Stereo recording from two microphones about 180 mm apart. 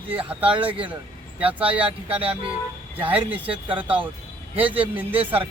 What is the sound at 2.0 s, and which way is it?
Speech, 30° right (ahead or behind).